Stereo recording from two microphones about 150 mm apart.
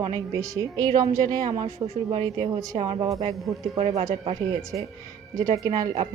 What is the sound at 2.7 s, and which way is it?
Speech, 35° right (ahead or behind).